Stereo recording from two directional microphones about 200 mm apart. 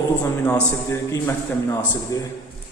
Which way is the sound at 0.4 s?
10° left (ahead or behind).